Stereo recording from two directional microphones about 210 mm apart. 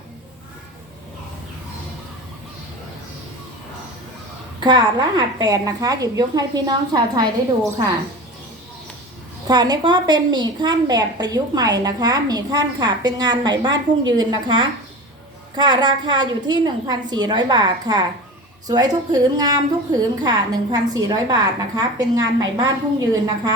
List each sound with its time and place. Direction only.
4.6 s a woman's voice: 20° right (ahead or behind)
9.5 s a woman's voice: 20° right (ahead or behind)